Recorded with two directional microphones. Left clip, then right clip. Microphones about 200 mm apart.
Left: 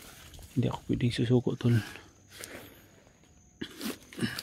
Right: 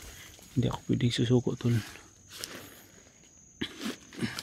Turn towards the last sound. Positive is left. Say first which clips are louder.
# left 1 dB
turn(degrees=10)  # may be behind; listen again after turning